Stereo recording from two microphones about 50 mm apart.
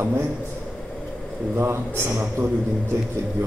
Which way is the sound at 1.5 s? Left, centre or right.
Right.